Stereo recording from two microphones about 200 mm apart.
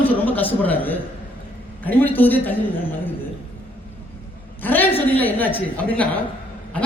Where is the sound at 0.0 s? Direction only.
10° left (ahead or behind).